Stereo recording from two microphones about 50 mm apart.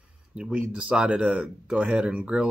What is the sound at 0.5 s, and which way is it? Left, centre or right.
Speech, right.